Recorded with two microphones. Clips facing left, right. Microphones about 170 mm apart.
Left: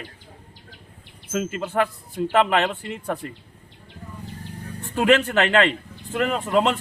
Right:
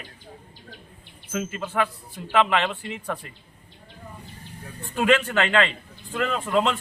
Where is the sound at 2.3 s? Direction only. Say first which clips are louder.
Left 1 dB; 40° left (ahead or behind).